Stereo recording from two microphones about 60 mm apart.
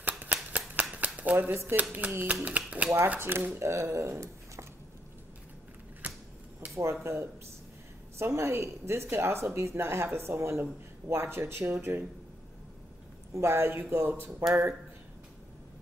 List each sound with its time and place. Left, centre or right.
0.2 s a sound: right
0.9 s scissors: right
1.5 s a woman's voice: right
1.8 s speech: right
3.2 s speech: right
6.0 s a sound: right
6.7 s a woman's voice: right
13.3 s a woman's voice: right